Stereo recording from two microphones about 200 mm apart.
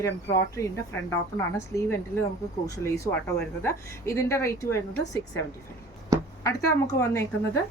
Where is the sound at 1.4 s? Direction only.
15° left (ahead or behind).